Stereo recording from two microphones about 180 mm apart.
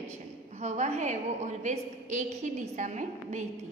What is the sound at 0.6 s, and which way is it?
A woman's voice, 40° right (ahead or behind).